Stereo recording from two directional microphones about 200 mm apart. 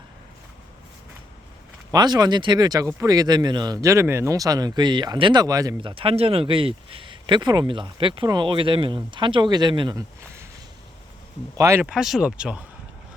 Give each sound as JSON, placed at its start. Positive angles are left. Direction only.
{"t": 1.9, "sound": "speech", "side_deg": -20}
{"t": 11.5, "sound": "speech", "side_deg": -15}